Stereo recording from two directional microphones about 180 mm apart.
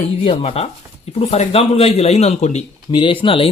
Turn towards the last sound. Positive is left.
turn(degrees=30)  # may be behind; listen again after turning